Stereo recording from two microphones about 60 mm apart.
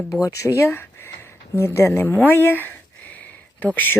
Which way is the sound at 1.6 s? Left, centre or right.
Left.